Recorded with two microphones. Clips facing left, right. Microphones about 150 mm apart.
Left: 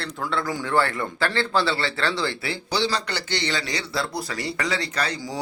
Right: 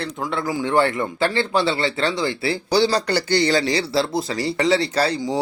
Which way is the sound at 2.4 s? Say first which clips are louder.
Right 7 dB; 35° right (ahead or behind).